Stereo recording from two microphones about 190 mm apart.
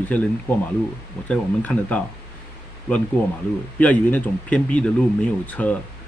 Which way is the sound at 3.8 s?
10° left (ahead or behind).